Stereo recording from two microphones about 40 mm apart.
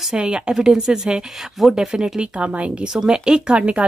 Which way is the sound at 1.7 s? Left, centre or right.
Centre.